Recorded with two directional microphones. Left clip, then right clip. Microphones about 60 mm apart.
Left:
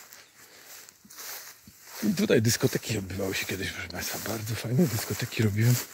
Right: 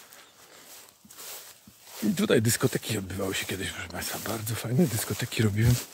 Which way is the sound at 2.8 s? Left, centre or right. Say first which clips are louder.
Even; right.